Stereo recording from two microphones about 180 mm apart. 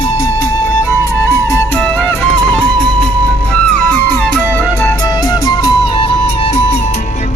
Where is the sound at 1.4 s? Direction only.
10° left (ahead or behind).